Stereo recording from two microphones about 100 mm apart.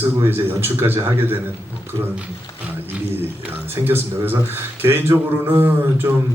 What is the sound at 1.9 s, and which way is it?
Speech, 35° right (ahead or behind).